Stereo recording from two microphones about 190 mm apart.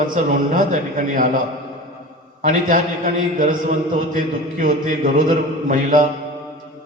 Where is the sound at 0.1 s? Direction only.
45° right (ahead or behind).